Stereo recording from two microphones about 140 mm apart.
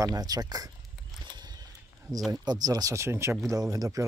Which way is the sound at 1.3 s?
30° right (ahead or behind).